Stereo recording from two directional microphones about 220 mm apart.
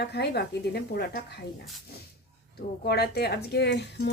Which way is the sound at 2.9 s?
45° left (ahead or behind).